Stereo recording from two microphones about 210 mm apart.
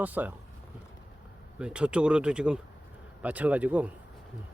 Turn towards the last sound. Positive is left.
turn(degrees=-5)  # may be behind; listen again after turning